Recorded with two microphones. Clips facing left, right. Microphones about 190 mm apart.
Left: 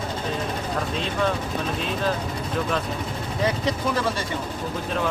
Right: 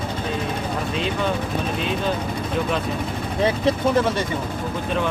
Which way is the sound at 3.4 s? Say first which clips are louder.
Right 5 dB; 25° right (ahead or behind).